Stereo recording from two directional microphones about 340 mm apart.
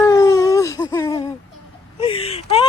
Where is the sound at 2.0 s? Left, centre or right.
Centre.